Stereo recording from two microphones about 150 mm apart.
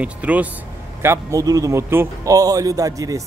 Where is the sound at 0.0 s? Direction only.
10° right (ahead or behind).